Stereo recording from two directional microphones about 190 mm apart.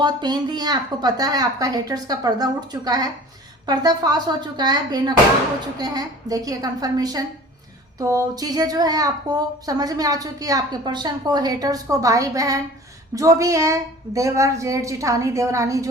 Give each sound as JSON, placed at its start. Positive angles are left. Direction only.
{"t": 0.0, "sound": "a woman's voice", "side_deg": -20}